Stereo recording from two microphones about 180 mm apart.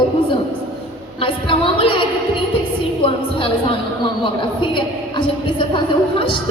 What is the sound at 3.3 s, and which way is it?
A woman's voice, 30° left (ahead or behind).